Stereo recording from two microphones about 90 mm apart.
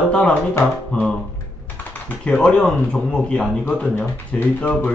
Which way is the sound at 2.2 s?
10° left (ahead or behind).